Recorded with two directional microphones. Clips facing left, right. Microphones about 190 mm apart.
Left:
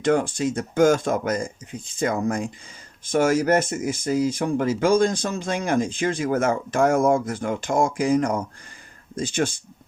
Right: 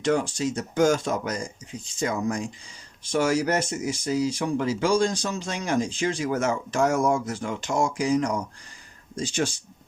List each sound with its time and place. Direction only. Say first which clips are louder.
0.0 s speech: left 3 dB; 55° left (ahead or behind)